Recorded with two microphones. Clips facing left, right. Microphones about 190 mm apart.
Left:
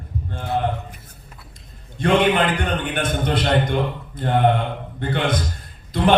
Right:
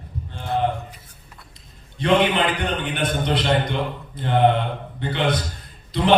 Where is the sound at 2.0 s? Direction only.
50° left (ahead or behind).